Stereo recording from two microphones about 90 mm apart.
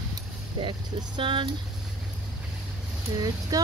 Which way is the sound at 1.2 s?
70° right (ahead or behind).